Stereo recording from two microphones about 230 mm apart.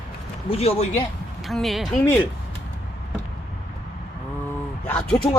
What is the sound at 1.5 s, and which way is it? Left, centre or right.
Speech, centre.